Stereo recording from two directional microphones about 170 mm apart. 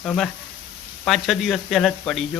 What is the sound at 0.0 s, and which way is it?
Speech, centre (ahead or behind).